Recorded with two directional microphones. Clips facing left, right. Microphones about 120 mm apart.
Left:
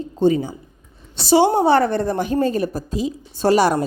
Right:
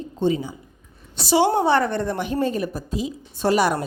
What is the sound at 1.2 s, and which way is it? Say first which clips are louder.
A woman's voice: left 4 dB; 30° left (ahead or behind).